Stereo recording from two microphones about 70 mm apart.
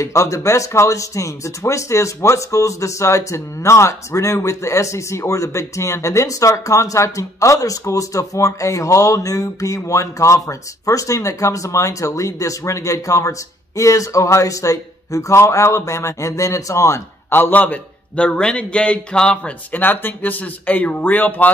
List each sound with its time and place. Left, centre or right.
0.0 s speech: left
17.3 s a man's voice: left
19.8 s a man's voice: left